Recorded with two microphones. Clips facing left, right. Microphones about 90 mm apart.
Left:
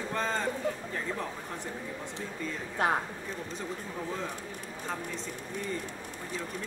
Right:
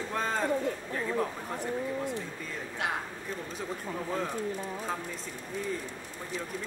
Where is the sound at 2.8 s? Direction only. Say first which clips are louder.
Left 6 dB; 40° left (ahead or behind).